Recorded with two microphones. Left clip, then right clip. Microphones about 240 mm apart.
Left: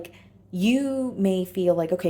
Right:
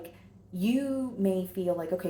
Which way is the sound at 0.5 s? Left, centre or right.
Left.